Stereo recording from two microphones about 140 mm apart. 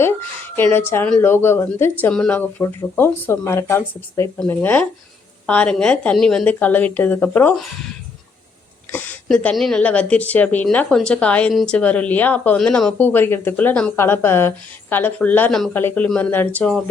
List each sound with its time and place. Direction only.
0.5 s a woman's voice: 15° left (ahead or behind)
8.9 s a woman's voice: 10° left (ahead or behind)